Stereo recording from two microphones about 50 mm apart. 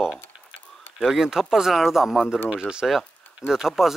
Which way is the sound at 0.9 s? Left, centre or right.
Centre.